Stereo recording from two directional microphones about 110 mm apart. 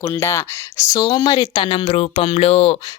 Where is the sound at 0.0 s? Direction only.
25° left (ahead or behind).